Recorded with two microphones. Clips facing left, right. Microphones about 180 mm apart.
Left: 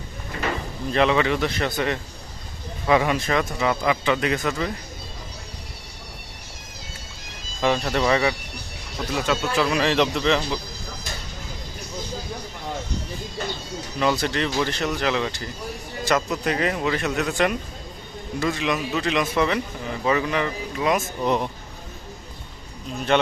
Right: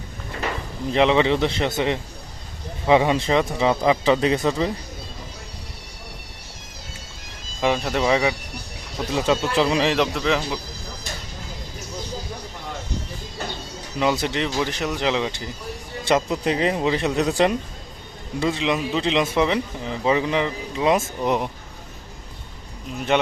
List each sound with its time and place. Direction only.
0.9 s speech: 20° right (ahead or behind)
7.6 s speech: 10° right (ahead or behind)
9.1 s speech: 30° right (ahead or behind)
9.9 s speech: 5° right (ahead or behind)
14.0 s speech: 20° right (ahead or behind)